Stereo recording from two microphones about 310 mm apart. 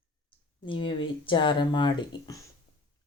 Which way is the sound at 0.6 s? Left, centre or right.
Centre.